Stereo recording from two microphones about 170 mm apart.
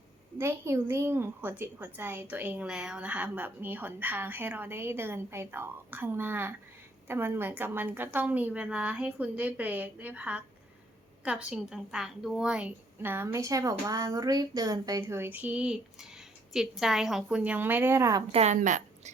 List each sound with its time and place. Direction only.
0.3 s a woman's voice: 15° right (ahead or behind)
18.3 s a woman's voice: 40° right (ahead or behind)